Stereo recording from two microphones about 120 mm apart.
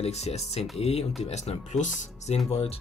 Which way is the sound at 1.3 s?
70° left (ahead or behind).